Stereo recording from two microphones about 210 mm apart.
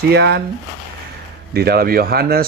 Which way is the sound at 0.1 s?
55° right (ahead or behind).